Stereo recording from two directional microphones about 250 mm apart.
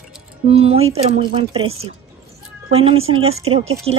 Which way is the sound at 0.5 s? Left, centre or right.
Right.